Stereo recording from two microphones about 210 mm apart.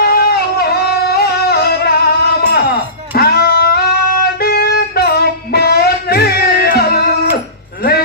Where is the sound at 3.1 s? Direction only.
50° left (ahead or behind).